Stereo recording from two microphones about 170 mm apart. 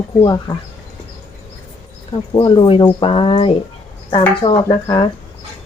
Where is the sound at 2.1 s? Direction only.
30° left (ahead or behind).